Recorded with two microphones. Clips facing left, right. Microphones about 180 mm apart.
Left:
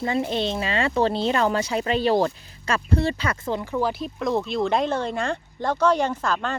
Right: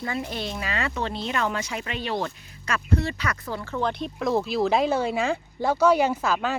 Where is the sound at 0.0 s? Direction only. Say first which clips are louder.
Left 6 dB; 25° left (ahead or behind).